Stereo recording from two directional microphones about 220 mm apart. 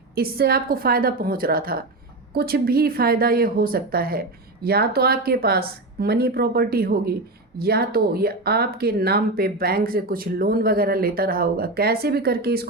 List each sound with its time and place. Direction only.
0.2 s a woman's voice: 45° right (ahead or behind)